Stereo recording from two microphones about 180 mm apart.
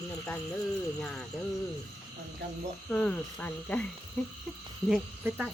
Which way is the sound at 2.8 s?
5° left (ahead or behind).